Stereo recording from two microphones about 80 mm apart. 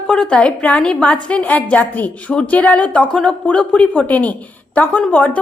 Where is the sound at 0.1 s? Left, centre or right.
Centre.